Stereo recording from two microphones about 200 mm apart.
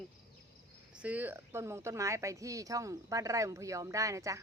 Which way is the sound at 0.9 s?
5° right (ahead or behind).